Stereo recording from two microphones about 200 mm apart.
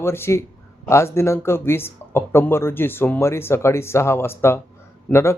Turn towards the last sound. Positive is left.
turn(degrees=15)  # may be behind; listen again after turning